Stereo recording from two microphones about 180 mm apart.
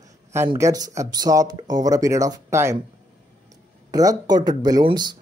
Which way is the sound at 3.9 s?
20° right (ahead or behind).